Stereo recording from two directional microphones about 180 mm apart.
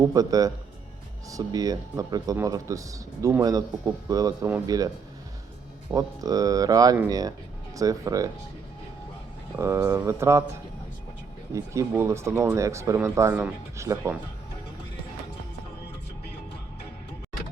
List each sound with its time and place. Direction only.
0.0 s speech: 20° right (ahead or behind)
5.9 s speech: 20° right (ahead or behind)
9.6 s speech: 15° right (ahead or behind)
11.5 s speech: 15° right (ahead or behind)